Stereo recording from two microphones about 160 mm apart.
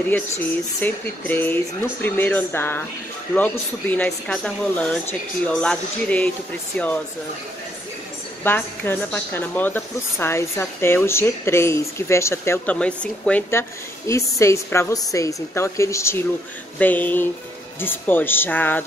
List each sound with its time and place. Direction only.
0.1 s speech: 10° left (ahead or behind)
8.5 s speech: 10° left (ahead or behind)